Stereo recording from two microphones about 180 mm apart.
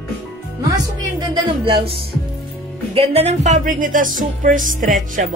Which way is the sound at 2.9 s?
35° right (ahead or behind).